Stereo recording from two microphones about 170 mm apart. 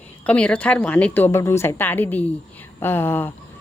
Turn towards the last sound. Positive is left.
turn(degrees=15)  # may be behind; listen again after turning